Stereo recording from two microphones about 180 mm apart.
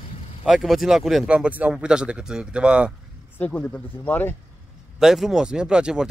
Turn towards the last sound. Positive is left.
turn(degrees=-5)  # may be behind; listen again after turning